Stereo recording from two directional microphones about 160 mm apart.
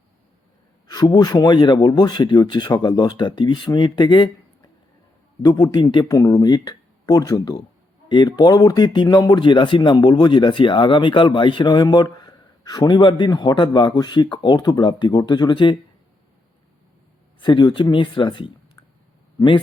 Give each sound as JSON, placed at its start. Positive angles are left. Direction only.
{"t": 0.9, "sound": "speech", "side_deg": 25}
{"t": 5.4, "sound": "speech", "side_deg": 25}
{"t": 17.4, "sound": "speech", "side_deg": 30}